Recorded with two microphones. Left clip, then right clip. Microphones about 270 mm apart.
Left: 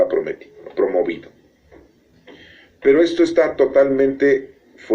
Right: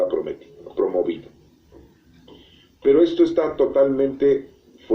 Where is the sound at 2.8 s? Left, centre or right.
Left.